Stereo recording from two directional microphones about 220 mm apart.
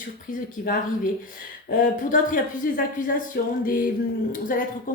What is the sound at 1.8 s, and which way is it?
Speech, 35° left (ahead or behind).